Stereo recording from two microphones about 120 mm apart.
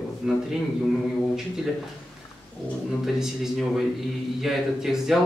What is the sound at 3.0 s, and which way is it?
A man's voice, 5° right (ahead or behind).